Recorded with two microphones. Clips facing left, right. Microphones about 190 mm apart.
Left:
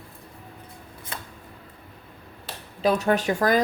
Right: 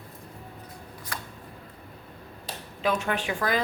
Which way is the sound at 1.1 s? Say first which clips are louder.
Left 1 dB; 25° left (ahead or behind).